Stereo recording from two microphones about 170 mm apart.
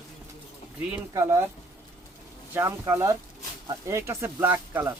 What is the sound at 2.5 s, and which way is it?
Speech, 15° right (ahead or behind).